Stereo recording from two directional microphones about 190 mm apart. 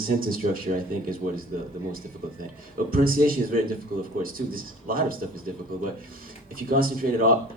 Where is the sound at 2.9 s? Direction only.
50° right (ahead or behind).